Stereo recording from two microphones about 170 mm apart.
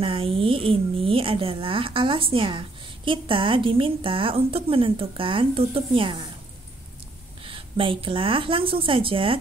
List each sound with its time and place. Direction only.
0.0 s a woman's voice: 30° right (ahead or behind)
7.4 s a woman's voice: 30° right (ahead or behind)